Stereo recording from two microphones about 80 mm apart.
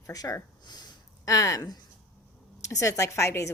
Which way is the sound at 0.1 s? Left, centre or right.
Left.